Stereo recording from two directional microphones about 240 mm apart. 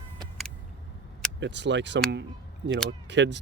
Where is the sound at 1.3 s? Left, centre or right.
Right.